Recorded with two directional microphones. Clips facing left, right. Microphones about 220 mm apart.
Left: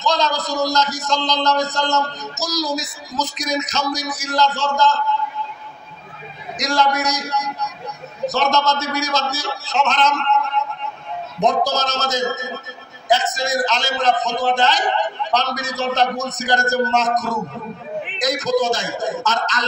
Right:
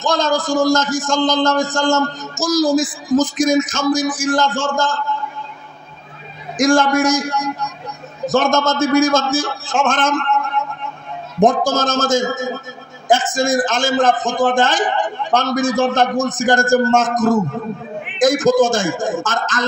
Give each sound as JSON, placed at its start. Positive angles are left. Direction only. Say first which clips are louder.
{"t": 0.0, "sound": "a man's voice", "louder": "right 3 dB", "side_deg": -50}
{"t": 6.6, "sound": "a man's voice", "louder": "right 7 dB", "side_deg": -50}